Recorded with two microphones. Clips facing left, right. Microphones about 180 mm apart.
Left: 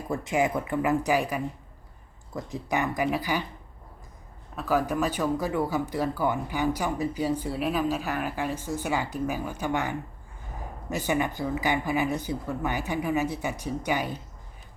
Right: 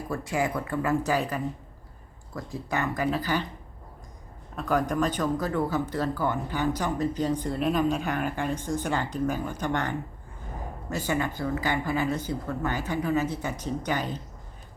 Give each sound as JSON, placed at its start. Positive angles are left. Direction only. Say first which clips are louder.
{"t": 0.1, "sound": "speech", "louder": "left 3 dB", "side_deg": 20}
{"t": 4.5, "sound": "speech", "louder": "even", "side_deg": 5}